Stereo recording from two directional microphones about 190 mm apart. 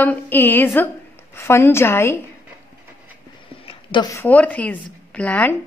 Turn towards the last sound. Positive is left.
turn(degrees=5)  # may be behind; listen again after turning